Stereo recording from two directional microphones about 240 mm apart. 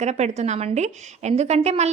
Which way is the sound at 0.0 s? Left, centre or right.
Right.